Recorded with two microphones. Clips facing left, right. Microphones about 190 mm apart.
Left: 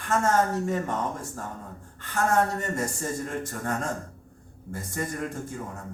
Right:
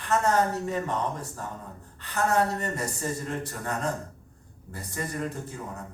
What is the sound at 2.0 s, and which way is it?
A man's voice, 45° left (ahead or behind).